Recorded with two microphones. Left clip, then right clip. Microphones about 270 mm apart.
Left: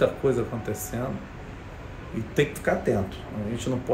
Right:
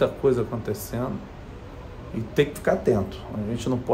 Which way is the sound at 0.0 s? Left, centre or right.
Centre.